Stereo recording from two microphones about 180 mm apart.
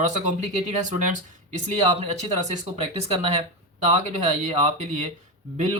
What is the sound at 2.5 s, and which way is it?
Speech, 35° right (ahead or behind).